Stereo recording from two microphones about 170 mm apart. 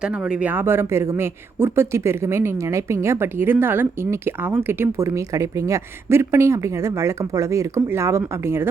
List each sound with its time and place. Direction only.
0.0 s speech: 5° right (ahead or behind)